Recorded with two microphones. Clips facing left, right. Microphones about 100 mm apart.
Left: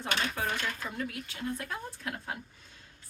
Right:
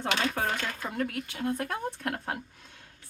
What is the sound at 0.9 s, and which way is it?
Speech, 60° right (ahead or behind).